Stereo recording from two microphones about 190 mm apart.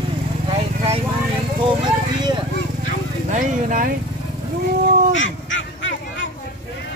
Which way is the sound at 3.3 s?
45° right (ahead or behind).